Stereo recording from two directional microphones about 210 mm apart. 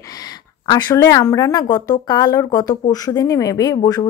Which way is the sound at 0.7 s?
20° left (ahead or behind).